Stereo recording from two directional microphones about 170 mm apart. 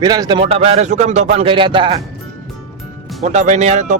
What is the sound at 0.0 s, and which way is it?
Speech, 25° right (ahead or behind).